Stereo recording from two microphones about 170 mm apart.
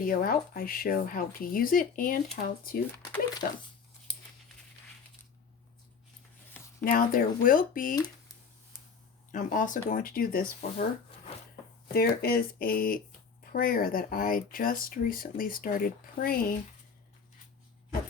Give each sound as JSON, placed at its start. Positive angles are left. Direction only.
{"t": 0.0, "sound": "speech", "side_deg": 55}
{"t": 6.8, "sound": "speech", "side_deg": 55}
{"t": 7.9, "sound": "a sound", "side_deg": 20}
{"t": 9.3, "sound": "speech", "side_deg": 50}
{"t": 11.9, "sound": "speech", "side_deg": 65}